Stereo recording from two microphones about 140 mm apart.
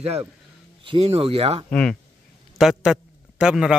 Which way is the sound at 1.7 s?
10° left (ahead or behind).